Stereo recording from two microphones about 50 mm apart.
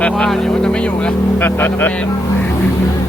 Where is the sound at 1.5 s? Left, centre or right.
Left.